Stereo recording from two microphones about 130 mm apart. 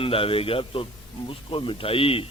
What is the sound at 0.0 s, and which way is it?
Speech, 45° left (ahead or behind).